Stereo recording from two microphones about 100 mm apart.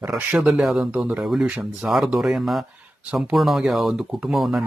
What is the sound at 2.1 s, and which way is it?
A man's voice, centre (ahead or behind).